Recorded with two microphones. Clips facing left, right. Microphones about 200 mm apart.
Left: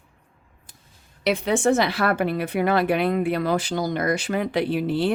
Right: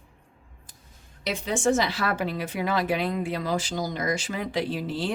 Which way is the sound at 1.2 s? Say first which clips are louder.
Left 5 dB; 65° left (ahead or behind).